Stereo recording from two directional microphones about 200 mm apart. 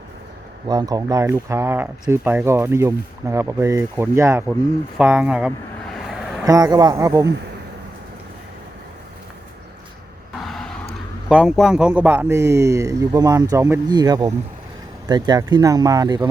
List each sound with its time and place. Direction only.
0.7 s speech: 20° right (ahead or behind)
4.9 s a sound: 10° right (ahead or behind)
6.4 s speech: 20° right (ahead or behind)
10.4 s vehicle: centre (ahead or behind)
11.3 s speech: 5° right (ahead or behind); by 16.3 s 20° right (ahead or behind)